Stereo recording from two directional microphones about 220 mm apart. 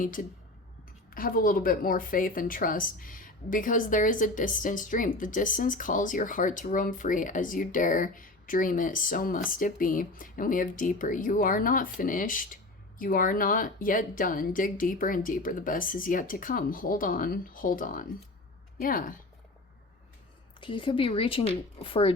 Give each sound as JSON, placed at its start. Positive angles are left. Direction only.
{"t": 0.0, "sound": "a woman's voice", "side_deg": 40}
{"t": 20.6, "sound": "speech", "side_deg": 20}